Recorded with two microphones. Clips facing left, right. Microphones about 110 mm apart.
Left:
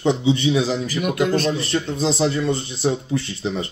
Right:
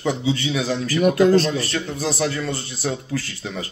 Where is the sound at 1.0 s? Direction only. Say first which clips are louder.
Right 6 dB; 35° right (ahead or behind).